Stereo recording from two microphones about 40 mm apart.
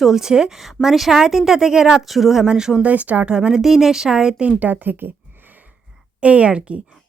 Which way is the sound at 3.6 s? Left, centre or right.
Centre.